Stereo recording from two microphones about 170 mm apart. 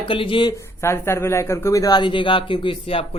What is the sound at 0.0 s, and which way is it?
Speech, 30° left (ahead or behind).